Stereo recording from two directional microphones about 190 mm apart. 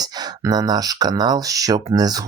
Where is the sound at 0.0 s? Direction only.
20° right (ahead or behind).